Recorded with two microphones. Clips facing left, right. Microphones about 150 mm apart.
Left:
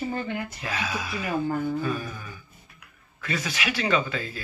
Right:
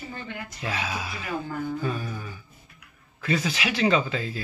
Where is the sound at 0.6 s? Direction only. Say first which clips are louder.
Even; 25° right (ahead or behind).